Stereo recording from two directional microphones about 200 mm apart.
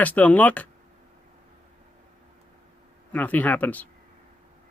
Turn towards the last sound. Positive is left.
turn(degrees=10)  # may be behind; listen again after turning